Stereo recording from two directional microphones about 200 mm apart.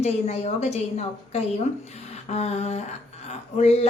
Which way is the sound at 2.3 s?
30° left (ahead or behind).